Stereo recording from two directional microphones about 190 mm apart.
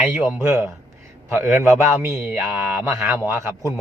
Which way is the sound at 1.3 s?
15° right (ahead or behind).